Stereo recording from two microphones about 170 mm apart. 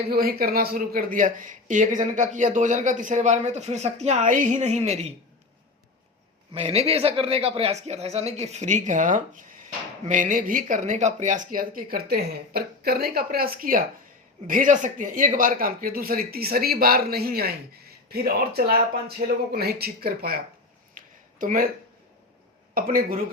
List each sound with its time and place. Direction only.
0.1 s speech: 60° right (ahead or behind); by 5.1 s 40° right (ahead or behind)
6.5 s speech: 35° right (ahead or behind); by 20.4 s 60° right (ahead or behind)
20.9 s a sound: 50° right (ahead or behind)
22.7 s speech: 55° right (ahead or behind)